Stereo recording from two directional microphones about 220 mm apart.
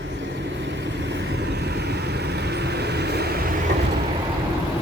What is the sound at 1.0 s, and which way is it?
Vehicle, 50° right (ahead or behind).